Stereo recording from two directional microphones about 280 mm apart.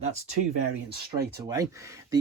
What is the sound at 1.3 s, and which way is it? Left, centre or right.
Speech, centre.